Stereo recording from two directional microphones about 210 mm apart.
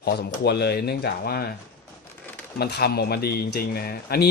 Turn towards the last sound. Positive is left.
turn(degrees=45)  # may be behind; listen again after turning